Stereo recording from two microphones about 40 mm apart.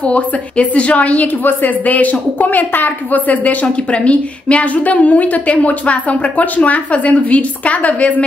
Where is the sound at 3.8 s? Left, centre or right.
Left.